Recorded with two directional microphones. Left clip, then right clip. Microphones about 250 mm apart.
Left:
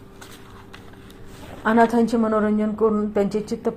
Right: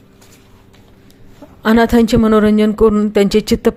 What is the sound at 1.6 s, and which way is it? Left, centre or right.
A woman's voice, right.